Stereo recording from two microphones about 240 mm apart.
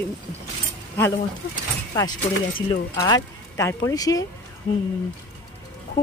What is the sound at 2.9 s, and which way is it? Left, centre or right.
Speech, centre.